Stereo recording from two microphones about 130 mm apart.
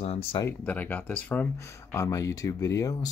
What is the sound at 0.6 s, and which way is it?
Speech, 10° left (ahead or behind).